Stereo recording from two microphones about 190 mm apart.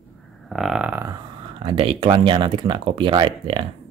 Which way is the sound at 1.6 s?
30° right (ahead or behind).